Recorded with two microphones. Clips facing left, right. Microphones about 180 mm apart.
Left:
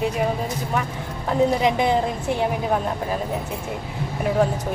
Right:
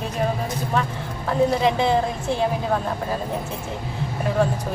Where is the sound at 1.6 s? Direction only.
15° left (ahead or behind).